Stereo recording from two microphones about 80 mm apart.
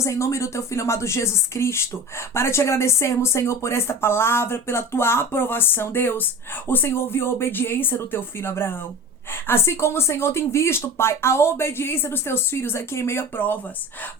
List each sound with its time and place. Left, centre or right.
0.0 s speech: left